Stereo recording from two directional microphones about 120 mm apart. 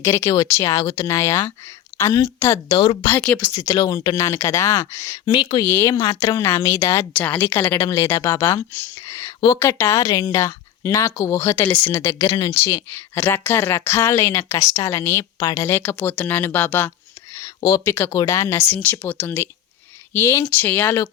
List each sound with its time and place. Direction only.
0.0 s a woman's voice: 20° left (ahead or behind)
2.6 s a woman's voice: 50° left (ahead or behind)
3.0 s speech: 15° left (ahead or behind)
3.6 s a woman's voice: 30° left (ahead or behind)
5.3 s speech: 40° left (ahead or behind)
5.6 s a woman's voice: 20° left (ahead or behind)
7.1 s a woman's voice: 15° left (ahead or behind); by 15.5 s 30° left (ahead or behind)
15.5 s speech: 20° left (ahead or behind)
17.3 s a sound: 30° left (ahead or behind)
17.9 s a woman's voice: 20° left (ahead or behind)